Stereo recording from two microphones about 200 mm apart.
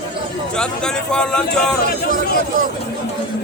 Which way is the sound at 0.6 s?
5° left (ahead or behind).